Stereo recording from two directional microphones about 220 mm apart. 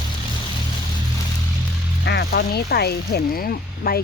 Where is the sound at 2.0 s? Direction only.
50° left (ahead or behind).